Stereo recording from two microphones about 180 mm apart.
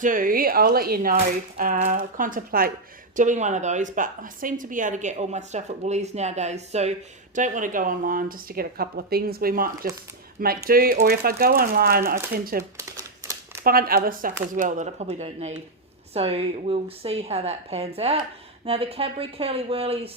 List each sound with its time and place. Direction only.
0.0 s speech: 50° right (ahead or behind)
3.2 s a woman's voice: 45° right (ahead or behind)
13.7 s a woman's voice: 55° right (ahead or behind); by 20.1 s 30° right (ahead or behind)